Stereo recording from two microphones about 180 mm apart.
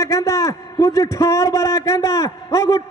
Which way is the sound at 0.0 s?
15° left (ahead or behind).